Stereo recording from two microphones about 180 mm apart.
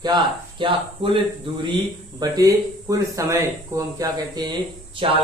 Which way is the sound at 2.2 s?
20° right (ahead or behind).